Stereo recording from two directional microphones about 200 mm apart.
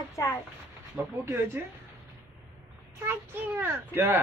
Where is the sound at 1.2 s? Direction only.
10° right (ahead or behind).